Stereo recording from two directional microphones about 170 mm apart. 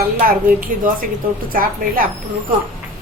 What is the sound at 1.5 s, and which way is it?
Speech, 55° right (ahead or behind).